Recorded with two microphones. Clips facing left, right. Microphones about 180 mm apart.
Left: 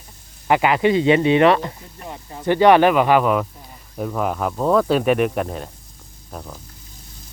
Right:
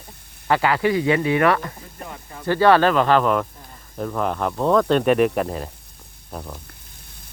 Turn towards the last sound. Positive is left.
turn(degrees=-5)  # may be behind; listen again after turning